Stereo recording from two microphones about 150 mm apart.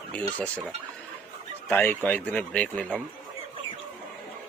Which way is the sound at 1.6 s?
10° left (ahead or behind).